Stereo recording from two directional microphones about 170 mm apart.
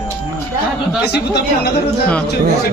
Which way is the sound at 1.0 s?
75° left (ahead or behind).